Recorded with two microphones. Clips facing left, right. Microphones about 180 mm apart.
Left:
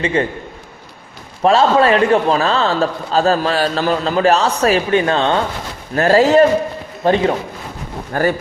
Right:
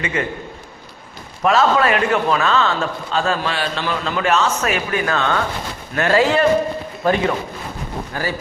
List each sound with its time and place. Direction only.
0.0 s a man's voice: 30° left (ahead or behind)
1.4 s a man's voice: 30° left (ahead or behind)
8.1 s a man's voice: 50° left (ahead or behind)